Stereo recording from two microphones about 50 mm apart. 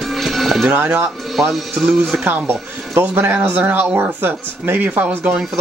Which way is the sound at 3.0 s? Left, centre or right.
Right.